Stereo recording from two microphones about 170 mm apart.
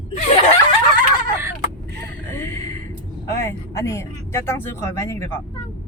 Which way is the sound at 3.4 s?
15° left (ahead or behind).